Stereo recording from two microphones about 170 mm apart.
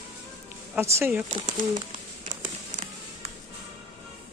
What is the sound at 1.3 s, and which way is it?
Speech, 50° right (ahead or behind).